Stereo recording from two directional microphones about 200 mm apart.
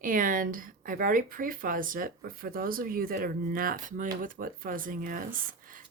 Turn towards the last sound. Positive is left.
turn(degrees=-45)  # may be behind; listen again after turning